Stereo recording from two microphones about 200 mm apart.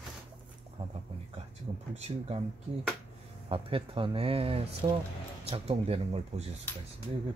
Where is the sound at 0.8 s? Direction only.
35° right (ahead or behind).